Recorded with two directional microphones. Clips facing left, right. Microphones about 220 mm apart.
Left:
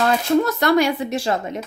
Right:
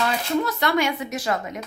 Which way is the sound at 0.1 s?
45° left (ahead or behind).